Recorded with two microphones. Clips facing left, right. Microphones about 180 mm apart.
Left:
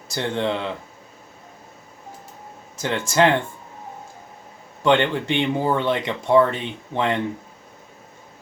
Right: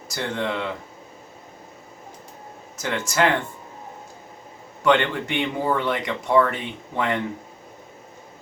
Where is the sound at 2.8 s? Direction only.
30° left (ahead or behind).